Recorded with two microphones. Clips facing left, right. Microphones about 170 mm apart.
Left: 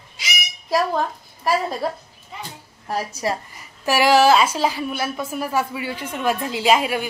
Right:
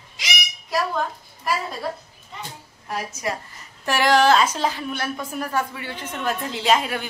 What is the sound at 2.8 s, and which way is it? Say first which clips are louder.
Speech: left 4 dB; 30° left (ahead or behind).